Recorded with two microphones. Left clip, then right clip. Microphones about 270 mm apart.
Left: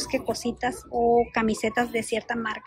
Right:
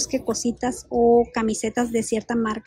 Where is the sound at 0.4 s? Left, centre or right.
Centre.